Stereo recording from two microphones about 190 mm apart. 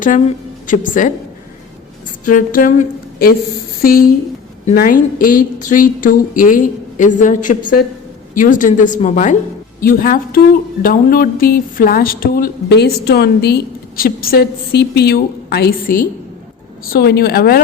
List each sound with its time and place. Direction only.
0.0 s a woman's voice: 45° left (ahead or behind)
2.2 s a sound: 45° left (ahead or behind)
4.6 s speech: 45° left (ahead or behind)
9.8 s speech: 50° left (ahead or behind)